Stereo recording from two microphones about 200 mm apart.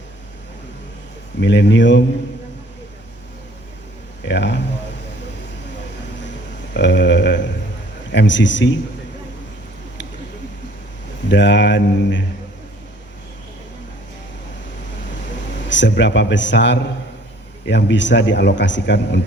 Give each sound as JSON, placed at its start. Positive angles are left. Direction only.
{"t": 1.4, "sound": "speech", "side_deg": 65}
{"t": 4.2, "sound": "speech", "side_deg": 60}
{"t": 6.7, "sound": "a sound", "side_deg": 60}
{"t": 8.1, "sound": "speech", "side_deg": 60}
{"t": 11.3, "sound": "speech", "side_deg": 60}
{"t": 15.7, "sound": "speech", "side_deg": 65}